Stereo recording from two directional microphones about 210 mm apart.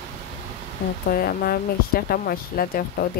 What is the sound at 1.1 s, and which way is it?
Speech, 45° left (ahead or behind).